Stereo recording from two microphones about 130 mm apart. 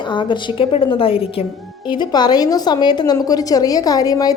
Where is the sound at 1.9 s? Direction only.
35° left (ahead or behind).